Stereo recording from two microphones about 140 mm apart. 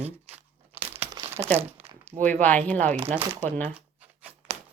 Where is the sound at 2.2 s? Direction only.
10° left (ahead or behind).